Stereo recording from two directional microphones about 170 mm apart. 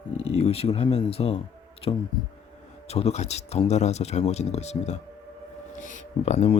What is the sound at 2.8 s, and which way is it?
Speech, 40° left (ahead or behind).